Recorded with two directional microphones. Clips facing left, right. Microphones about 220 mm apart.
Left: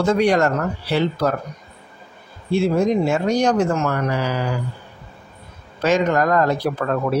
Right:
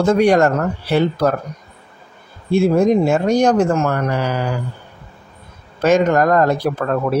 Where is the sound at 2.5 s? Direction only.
50° right (ahead or behind).